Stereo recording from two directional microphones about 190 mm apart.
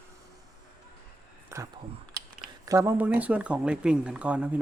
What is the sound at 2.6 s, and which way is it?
Speech, 15° right (ahead or behind).